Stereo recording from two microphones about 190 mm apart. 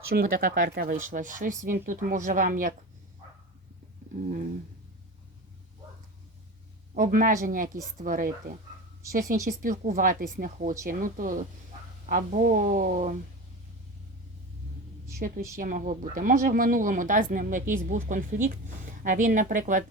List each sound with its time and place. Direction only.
0.1 s speech: 50° right (ahead or behind)
6.9 s speech: 45° right (ahead or behind)
15.2 s speech: 45° right (ahead or behind)